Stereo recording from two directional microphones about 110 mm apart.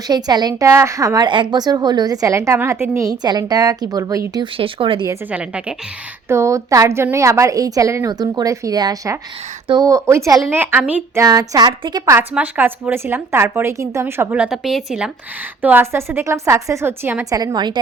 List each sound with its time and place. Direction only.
0.1 s a woman's voice: 40° right (ahead or behind)
0.7 s a woman's voice: 25° right (ahead or behind)
4.5 s speech: 55° right (ahead or behind)
5.3 s a woman's voice: 10° right (ahead or behind)
6.2 s a woman's voice: 25° right (ahead or behind)
11.1 s a woman's voice: 30° right (ahead or behind)
12.3 s a woman's voice: 15° right (ahead or behind)
14.3 s a woman's voice: 5° right (ahead or behind)
15.6 s a woman's voice: 20° right (ahead or behind)
17.2 s a woman's voice: 35° right (ahead or behind)